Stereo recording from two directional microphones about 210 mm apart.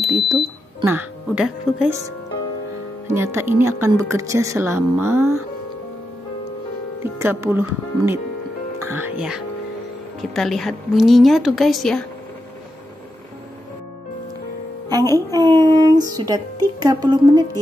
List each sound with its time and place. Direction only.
0.2 s speech: 25° right (ahead or behind)
0.8 s speech: 5° right (ahead or behind)
3.1 s speech: 10° right (ahead or behind)
7.0 s a woman's voice: 10° right (ahead or behind)
14.9 s a woman's voice: 15° right (ahead or behind)
15.7 s music: 20° right (ahead or behind)
16.8 s speech: 20° right (ahead or behind)